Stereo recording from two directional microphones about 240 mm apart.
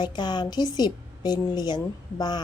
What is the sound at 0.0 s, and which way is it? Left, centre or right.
A woman's voice, centre.